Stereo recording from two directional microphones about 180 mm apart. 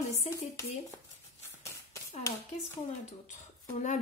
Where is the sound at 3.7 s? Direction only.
40° left (ahead or behind).